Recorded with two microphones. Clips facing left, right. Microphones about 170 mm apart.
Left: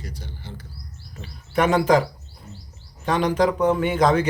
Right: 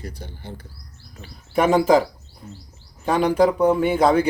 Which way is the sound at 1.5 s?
5° right (ahead or behind).